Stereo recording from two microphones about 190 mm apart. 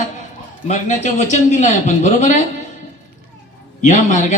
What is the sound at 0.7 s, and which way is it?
Speech, 40° left (ahead or behind).